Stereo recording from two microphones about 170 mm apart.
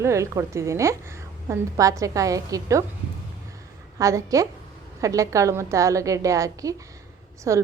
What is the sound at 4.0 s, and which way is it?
A woman's voice, 20° right (ahead or behind).